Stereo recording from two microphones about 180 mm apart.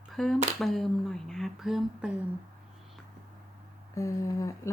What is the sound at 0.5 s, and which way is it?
Speech, centre (ahead or behind).